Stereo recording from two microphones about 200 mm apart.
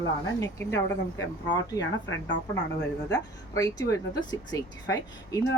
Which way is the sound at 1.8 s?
60° left (ahead or behind).